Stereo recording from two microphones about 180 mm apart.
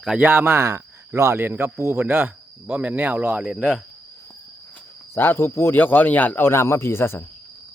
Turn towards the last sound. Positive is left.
turn(degrees=15)  # may be behind; listen again after turning